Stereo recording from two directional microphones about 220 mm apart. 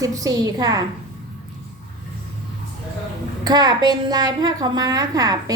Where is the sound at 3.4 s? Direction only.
20° right (ahead or behind).